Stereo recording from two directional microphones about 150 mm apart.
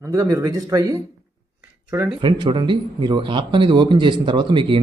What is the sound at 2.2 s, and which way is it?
Speech, 35° right (ahead or behind).